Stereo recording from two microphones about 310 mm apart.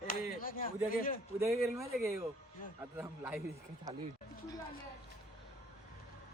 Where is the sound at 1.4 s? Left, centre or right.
Centre.